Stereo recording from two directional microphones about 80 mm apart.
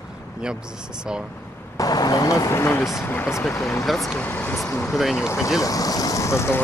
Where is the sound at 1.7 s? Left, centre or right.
Left.